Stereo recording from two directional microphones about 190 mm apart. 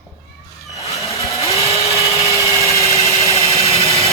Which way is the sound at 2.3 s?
15° left (ahead or behind).